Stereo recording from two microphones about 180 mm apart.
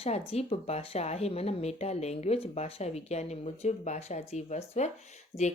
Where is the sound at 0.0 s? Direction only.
35° left (ahead or behind).